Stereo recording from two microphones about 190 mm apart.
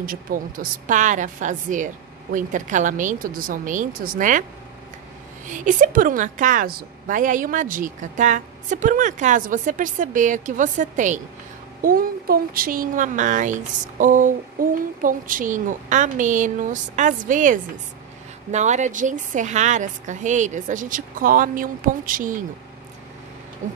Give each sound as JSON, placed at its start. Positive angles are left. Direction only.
{"t": 0.0, "sound": "speech", "side_deg": -45}
{"t": 5.5, "sound": "a woman's voice", "side_deg": -45}
{"t": 23.6, "sound": "a woman's voice", "side_deg": -40}